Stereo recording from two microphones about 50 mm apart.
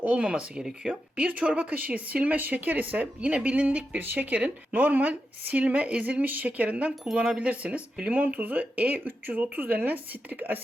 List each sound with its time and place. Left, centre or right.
0.0 s a woman's voice: right
3.2 s a woman's voice: right